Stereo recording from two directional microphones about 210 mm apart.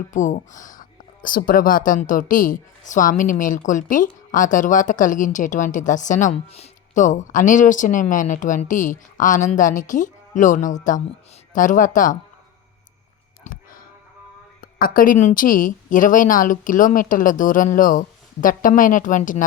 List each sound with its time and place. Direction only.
0.1 s speech: 35° left (ahead or behind)
13.4 s a sound: 40° left (ahead or behind)
14.6 s speech: 45° left (ahead or behind)